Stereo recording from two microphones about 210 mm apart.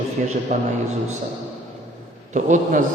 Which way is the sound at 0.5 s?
35° right (ahead or behind).